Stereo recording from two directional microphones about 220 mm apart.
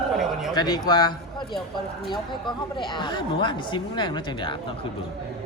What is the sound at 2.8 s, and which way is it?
Speech, 20° left (ahead or behind).